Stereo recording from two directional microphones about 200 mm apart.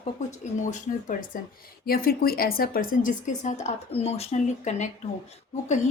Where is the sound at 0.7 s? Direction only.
40° left (ahead or behind).